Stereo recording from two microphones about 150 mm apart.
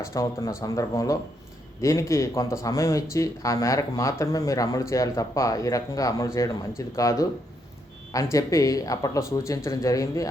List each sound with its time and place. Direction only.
0.0 s speech: 20° left (ahead or behind)